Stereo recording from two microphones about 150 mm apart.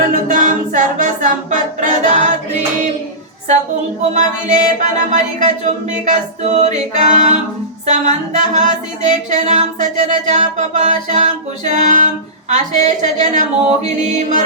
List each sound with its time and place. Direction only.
0.3 s a capella: 60° right (ahead or behind)
4.1 s music: 55° right (ahead or behind)
11.7 s female singing: 55° right (ahead or behind)
12.5 s music: 55° right (ahead or behind)